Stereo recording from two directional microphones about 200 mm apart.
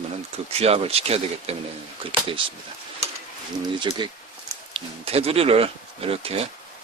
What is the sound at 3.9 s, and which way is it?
Speech, 20° right (ahead or behind).